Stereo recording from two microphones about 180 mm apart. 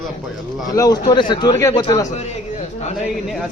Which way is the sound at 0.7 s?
20° left (ahead or behind).